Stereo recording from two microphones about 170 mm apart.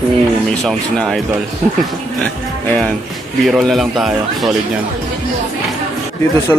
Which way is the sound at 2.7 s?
10° left (ahead or behind).